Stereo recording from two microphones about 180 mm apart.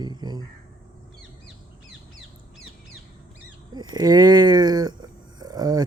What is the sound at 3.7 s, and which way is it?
Speech, 20° right (ahead or behind).